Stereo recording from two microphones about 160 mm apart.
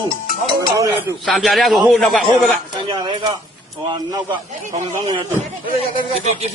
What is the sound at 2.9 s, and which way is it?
Speech, 30° right (ahead or behind).